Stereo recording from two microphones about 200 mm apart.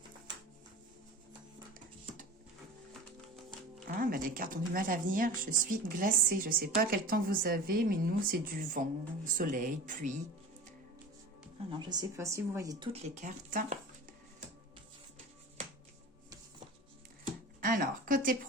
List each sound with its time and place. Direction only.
3.8 s a woman's voice: 45° right (ahead or behind)
11.7 s speech: 20° right (ahead or behind)
12.9 s speech: 35° right (ahead or behind)
17.6 s a woman's voice: 45° right (ahead or behind)